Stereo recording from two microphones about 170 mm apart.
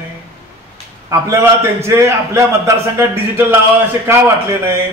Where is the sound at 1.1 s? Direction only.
15° right (ahead or behind).